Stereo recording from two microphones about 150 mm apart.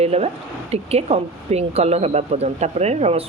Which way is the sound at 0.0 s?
45° right (ahead or behind).